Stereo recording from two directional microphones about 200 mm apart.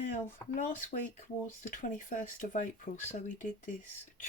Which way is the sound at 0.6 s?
40° left (ahead or behind).